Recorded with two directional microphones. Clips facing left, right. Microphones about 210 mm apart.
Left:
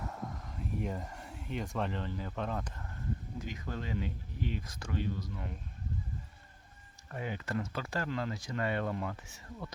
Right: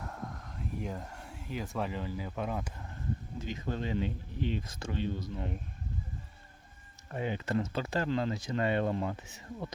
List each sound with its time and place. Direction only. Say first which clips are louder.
0.0 s a sound: even; centre (ahead or behind)
3.3 s speech: right 4 dB; 25° right (ahead or behind)
7.1 s speech: right 4 dB; 25° right (ahead or behind)